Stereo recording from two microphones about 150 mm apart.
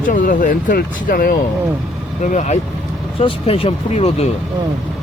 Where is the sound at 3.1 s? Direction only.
40° left (ahead or behind).